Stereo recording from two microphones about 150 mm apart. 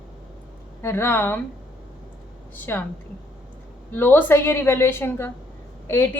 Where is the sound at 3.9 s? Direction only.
15° left (ahead or behind).